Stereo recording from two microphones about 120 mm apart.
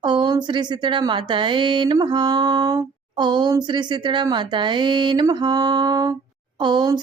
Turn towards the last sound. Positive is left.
turn(degrees=-40)  # may be behind; listen again after turning